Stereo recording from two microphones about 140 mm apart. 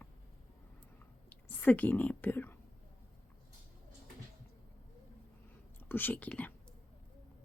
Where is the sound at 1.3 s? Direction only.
10° left (ahead or behind).